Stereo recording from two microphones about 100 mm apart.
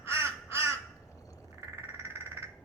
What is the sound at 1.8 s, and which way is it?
Frog, 25° right (ahead or behind).